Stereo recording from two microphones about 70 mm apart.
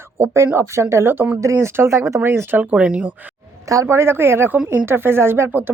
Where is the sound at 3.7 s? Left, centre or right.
Right.